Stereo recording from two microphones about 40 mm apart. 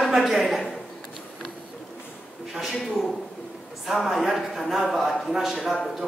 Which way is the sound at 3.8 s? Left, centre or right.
Centre.